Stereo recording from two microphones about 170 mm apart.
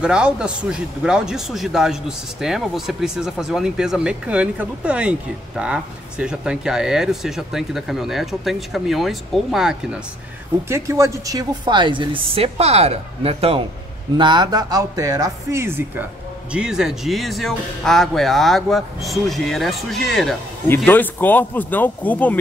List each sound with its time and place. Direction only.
0.0 s speech: 5° right (ahead or behind)
10.7 s a woman's voice: 15° right (ahead or behind); by 20.3 s centre (ahead or behind)
20.6 s speech: 10° left (ahead or behind)